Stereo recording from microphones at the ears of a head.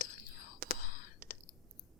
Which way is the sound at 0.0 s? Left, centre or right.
Left.